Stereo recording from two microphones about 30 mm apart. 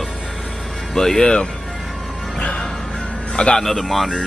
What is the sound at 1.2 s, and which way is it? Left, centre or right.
Speech, left.